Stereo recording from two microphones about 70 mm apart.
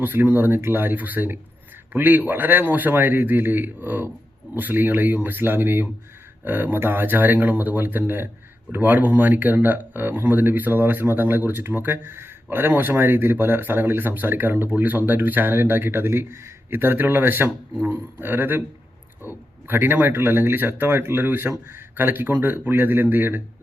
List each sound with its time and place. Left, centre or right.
0.0 s speech: right